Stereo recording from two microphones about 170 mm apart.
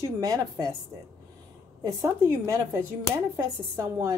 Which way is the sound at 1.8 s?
15° right (ahead or behind).